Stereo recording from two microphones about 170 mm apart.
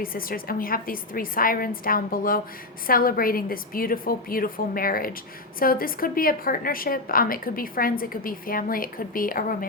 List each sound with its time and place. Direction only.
0.0 s a woman's voice: 60° left (ahead or behind)